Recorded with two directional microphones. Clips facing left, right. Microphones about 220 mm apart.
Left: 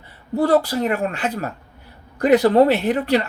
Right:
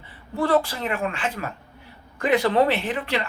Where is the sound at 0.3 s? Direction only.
40° left (ahead or behind).